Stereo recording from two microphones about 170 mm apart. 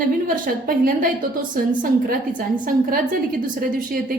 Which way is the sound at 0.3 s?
55° right (ahead or behind).